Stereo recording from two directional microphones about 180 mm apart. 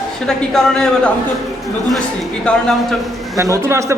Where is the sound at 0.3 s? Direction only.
5° left (ahead or behind).